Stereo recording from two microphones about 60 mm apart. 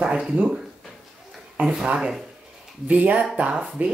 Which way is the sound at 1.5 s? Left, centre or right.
Centre.